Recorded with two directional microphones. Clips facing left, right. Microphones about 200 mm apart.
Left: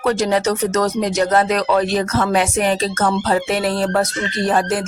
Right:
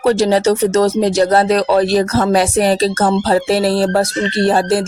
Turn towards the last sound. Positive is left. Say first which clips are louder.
# right 5 dB
turn(degrees=-30)  # may be behind; listen again after turning